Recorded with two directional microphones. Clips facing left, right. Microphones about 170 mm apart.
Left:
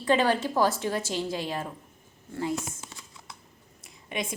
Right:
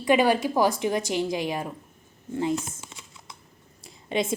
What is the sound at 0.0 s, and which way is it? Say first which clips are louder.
A woman's voice: right 3 dB; 10° right (ahead or behind).